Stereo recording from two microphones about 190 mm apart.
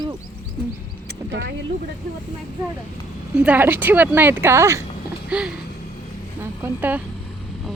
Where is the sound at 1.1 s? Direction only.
65° right (ahead or behind).